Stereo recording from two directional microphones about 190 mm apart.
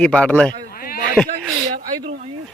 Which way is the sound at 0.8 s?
50° left (ahead or behind).